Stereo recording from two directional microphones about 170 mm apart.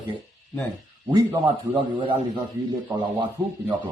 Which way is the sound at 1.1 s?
25° right (ahead or behind).